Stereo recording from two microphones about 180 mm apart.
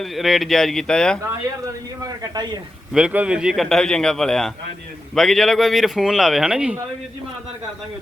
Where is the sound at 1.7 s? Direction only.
20° right (ahead or behind).